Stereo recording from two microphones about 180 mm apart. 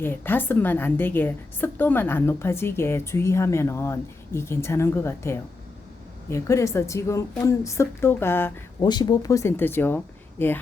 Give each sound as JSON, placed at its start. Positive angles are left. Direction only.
{"t": 0.0, "sound": "a woman's voice", "side_deg": 10}
{"t": 8.9, "sound": "a woman's voice", "side_deg": 25}